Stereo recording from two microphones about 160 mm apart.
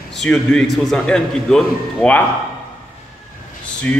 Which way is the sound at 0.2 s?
5° left (ahead or behind).